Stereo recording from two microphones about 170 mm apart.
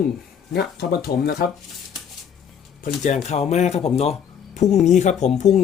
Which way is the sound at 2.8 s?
45° left (ahead or behind).